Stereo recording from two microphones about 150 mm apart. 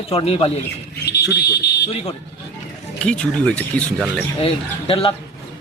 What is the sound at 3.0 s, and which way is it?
Speech, 5° left (ahead or behind).